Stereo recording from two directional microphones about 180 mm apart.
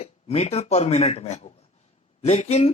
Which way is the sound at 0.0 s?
35° left (ahead or behind).